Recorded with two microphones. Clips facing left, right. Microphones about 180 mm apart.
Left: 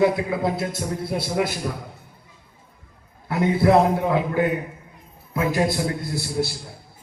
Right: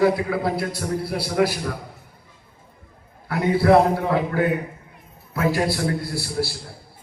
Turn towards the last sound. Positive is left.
turn(degrees=20)  # may be behind; listen again after turning